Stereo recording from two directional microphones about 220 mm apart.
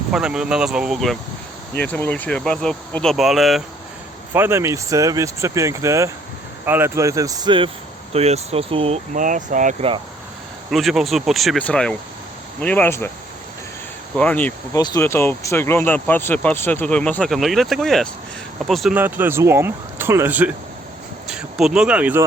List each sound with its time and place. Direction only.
0.1 s speech: 5° right (ahead or behind); by 9.9 s 35° right (ahead or behind)
10.7 s speech: centre (ahead or behind)
14.2 s speech: 5° left (ahead or behind)